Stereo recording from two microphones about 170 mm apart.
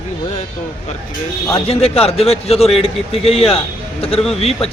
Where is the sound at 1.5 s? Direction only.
35° left (ahead or behind).